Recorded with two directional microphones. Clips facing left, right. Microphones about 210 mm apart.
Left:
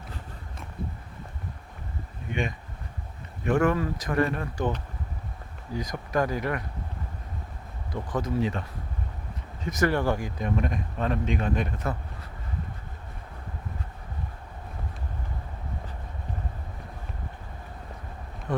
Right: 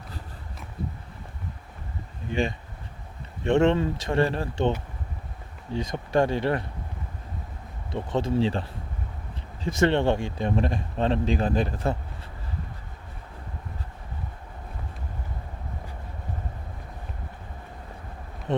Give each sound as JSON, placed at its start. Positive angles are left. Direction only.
{"t": 2.3, "sound": "speech", "side_deg": -30}
{"t": 5.7, "sound": "speech", "side_deg": -25}
{"t": 7.9, "sound": "speech", "side_deg": -25}
{"t": 9.6, "sound": "speech", "side_deg": -25}